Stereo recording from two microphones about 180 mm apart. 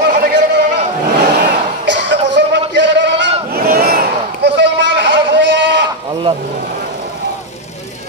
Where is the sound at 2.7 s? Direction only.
75° right (ahead or behind).